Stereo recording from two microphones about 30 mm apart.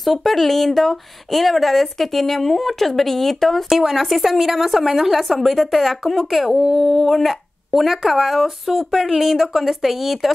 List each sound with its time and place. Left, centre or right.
0.0 s speech: centre